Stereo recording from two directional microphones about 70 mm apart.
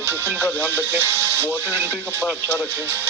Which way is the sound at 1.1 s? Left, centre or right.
Left.